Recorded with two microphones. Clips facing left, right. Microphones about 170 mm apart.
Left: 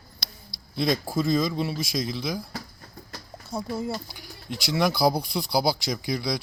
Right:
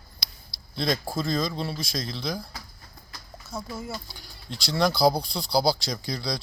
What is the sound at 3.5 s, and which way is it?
Speech, 30° left (ahead or behind).